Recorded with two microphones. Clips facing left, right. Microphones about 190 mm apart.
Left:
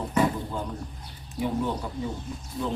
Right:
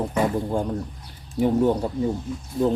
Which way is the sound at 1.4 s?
45° right (ahead or behind).